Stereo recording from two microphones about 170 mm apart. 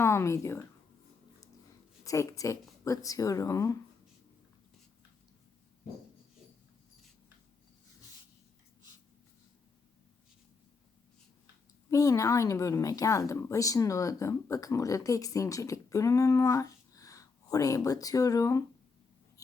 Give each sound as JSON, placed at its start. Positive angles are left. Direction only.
{"t": 0.0, "sound": "speech", "side_deg": 15}
{"t": 2.0, "sound": "a woman's voice", "side_deg": 20}
{"t": 11.9, "sound": "a woman's voice", "side_deg": 20}